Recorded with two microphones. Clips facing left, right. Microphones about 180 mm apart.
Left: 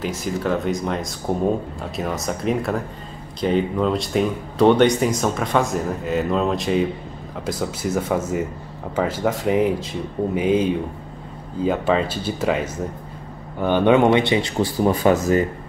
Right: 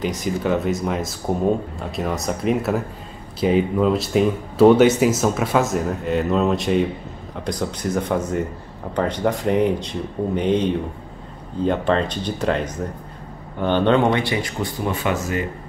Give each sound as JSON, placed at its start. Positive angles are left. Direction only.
{"t": 0.0, "sound": "speech", "side_deg": 5}
{"t": 14.1, "sound": "speech", "side_deg": 25}